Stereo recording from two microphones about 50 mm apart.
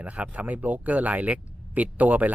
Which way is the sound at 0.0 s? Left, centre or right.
Right.